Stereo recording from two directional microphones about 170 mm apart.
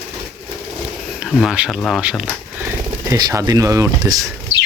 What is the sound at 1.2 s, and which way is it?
Speech, 5° right (ahead or behind).